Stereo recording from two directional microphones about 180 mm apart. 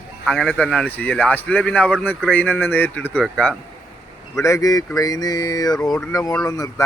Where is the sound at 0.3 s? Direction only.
5° left (ahead or behind).